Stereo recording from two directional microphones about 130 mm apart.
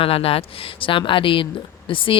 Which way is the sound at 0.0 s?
45° left (ahead or behind).